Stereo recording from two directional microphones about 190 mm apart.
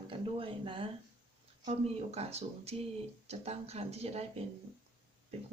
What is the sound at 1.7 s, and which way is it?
Speech, 35° right (ahead or behind).